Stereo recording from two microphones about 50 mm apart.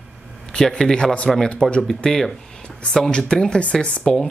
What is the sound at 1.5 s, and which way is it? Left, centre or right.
Speech, left.